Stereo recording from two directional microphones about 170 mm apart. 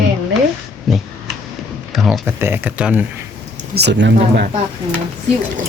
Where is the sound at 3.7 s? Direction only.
85° right.